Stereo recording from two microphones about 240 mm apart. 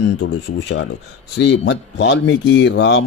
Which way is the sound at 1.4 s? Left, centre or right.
Left.